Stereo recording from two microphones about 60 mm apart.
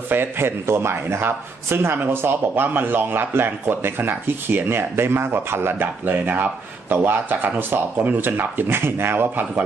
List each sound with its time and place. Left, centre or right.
0.1 s a man's voice: right